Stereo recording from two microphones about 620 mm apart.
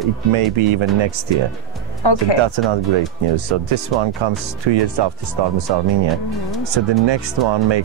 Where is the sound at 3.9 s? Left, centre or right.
Right.